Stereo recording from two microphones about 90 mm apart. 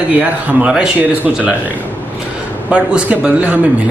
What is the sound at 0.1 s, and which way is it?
A man's voice, 15° right (ahead or behind).